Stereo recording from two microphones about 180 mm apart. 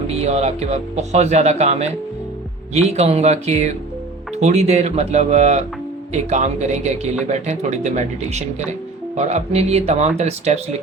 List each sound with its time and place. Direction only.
0.1 s speech: 35° right (ahead or behind)